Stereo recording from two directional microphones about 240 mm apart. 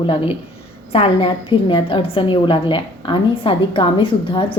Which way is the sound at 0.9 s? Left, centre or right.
Left.